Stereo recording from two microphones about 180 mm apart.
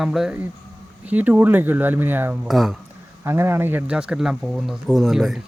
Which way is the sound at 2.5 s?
Centre (ahead or behind).